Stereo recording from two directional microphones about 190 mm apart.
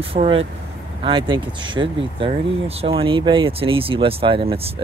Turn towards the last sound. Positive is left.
turn(degrees=-30)  # may be behind; listen again after turning